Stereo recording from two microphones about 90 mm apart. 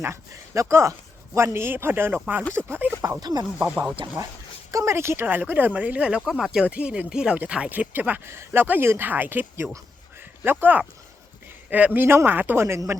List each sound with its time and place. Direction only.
0.0 s speech: 30° right (ahead or behind)
3.2 s speech: 50° right (ahead or behind)
3.6 s speech: 15° right (ahead or behind)
4.7 s speech: 35° right (ahead or behind)
10.2 s a sound: 25° right (ahead or behind)
11.9 s speech: 25° right (ahead or behind)